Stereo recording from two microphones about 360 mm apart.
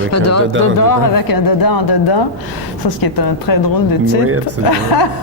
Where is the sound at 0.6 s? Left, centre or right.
Left.